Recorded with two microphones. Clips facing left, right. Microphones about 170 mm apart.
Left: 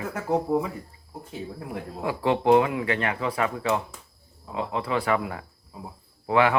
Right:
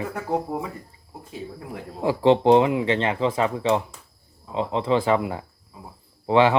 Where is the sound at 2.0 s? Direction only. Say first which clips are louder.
Right 5 dB; 25° right (ahead or behind).